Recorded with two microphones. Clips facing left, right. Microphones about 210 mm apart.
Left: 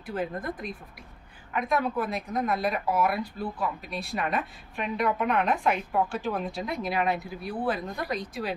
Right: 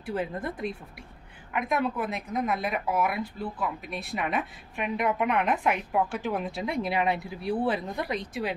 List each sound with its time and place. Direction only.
0.0 s a woman's voice: 25° right (ahead or behind)